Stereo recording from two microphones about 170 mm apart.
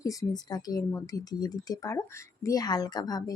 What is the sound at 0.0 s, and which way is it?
Speech, 20° left (ahead or behind).